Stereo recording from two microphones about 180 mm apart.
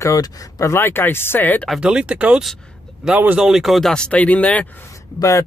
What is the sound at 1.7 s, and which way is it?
Speech, 5° right (ahead or behind).